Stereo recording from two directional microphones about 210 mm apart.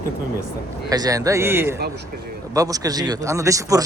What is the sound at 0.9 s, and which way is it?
Speech, 15° right (ahead or behind).